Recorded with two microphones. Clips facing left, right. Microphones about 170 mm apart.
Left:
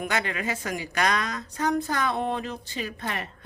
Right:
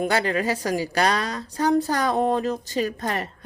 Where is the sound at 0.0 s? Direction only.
35° right (ahead or behind).